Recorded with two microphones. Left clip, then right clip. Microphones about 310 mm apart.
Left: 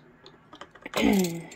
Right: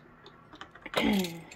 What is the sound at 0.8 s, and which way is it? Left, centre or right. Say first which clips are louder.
Typing: left 4 dB; left.